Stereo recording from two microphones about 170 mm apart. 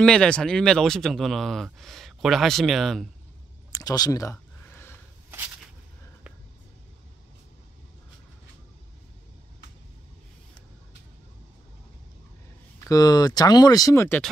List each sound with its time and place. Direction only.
0.0 s speech: 5° left (ahead or behind)
3.7 s a sound: 20° left (ahead or behind)
12.8 s speech: 20° left (ahead or behind)